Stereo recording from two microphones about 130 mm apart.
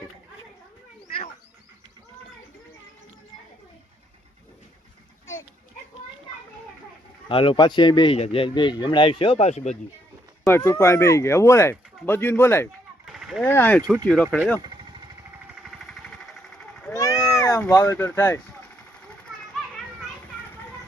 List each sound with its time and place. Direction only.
7.3 s speech: 40° left (ahead or behind); by 9.7 s 60° left (ahead or behind)
10.4 s speech: 20° left (ahead or behind)
13.1 s a sound: 5° right (ahead or behind)
13.4 s speech: 15° left (ahead or behind)
15.6 s jackhammer: 5° left (ahead or behind)
16.9 s a sound: 25° left (ahead or behind)
17.7 s speech: 20° left (ahead or behind)